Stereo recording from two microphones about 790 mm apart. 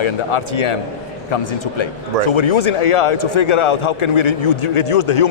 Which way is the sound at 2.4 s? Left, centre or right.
Left.